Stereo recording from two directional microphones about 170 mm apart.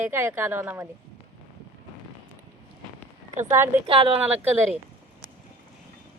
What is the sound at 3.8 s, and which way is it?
Speech, 35° right (ahead or behind).